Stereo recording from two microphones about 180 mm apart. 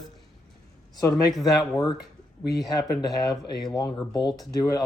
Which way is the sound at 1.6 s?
20° left (ahead or behind).